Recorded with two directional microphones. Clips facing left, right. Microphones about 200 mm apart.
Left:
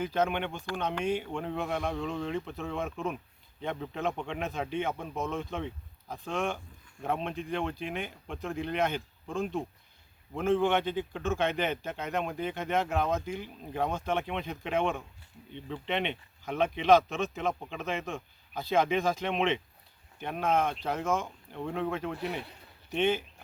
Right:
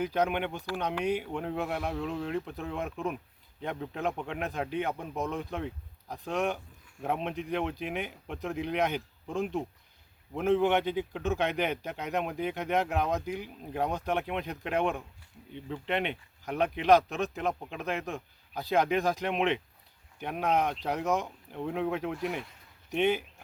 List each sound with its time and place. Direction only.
0.0 s speech: 10° right (ahead or behind)
5.1 s speech: 15° right (ahead or behind)
21.6 s speech: 5° right (ahead or behind)